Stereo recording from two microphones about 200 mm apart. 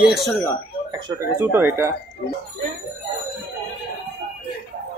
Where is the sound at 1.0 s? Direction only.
15° right (ahead or behind).